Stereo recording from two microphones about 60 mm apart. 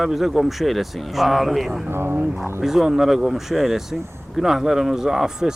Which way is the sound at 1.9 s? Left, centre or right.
Right.